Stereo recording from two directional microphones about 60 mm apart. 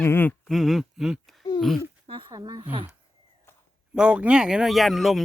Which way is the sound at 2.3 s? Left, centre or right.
Right.